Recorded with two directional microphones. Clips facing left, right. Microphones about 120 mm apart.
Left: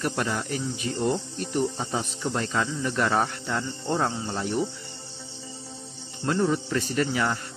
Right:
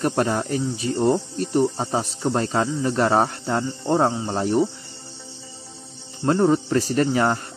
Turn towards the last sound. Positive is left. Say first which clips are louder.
# right 6 dB
turn(degrees=-40)  # may be behind; listen again after turning